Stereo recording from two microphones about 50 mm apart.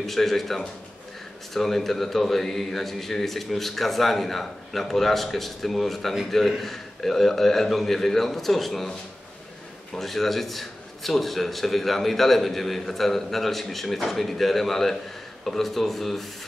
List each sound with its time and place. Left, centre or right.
0.0 s speech: centre
9.9 s speech: centre